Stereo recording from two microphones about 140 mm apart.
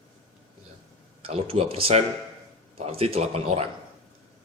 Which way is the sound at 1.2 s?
40° right (ahead or behind).